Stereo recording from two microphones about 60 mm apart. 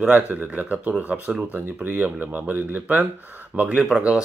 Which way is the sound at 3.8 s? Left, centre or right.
Centre.